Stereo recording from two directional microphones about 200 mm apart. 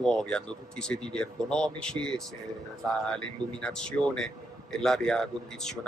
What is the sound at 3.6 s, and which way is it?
Speech, 5° left (ahead or behind).